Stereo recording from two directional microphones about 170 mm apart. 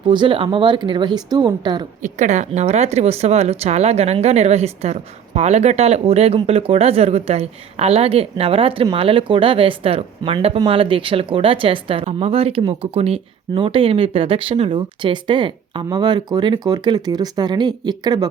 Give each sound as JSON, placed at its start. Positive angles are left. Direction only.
{"t": 0.1, "sound": "speech", "side_deg": -30}
{"t": 2.0, "sound": "speech", "side_deg": -45}